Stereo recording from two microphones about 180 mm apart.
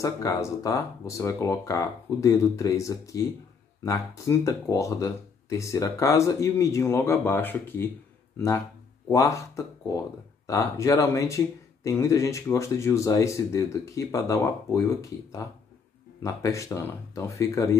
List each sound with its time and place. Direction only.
0.0 s speech: 20° left (ahead or behind)
9.1 s speech: 15° left (ahead or behind)